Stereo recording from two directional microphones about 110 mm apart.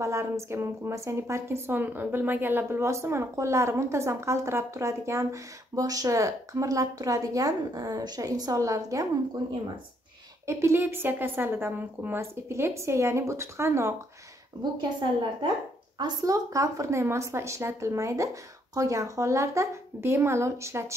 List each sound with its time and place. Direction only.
0.0 s a woman's voice: 25° right (ahead or behind)
10.4 s a woman's voice: 25° right (ahead or behind)
14.5 s speech: 40° right (ahead or behind)
16.0 s a woman's voice: 30° right (ahead or behind)